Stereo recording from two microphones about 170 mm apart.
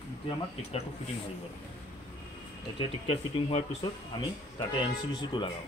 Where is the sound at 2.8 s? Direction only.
30° left (ahead or behind).